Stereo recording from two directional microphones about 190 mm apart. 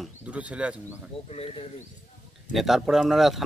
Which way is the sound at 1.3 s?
30° left (ahead or behind).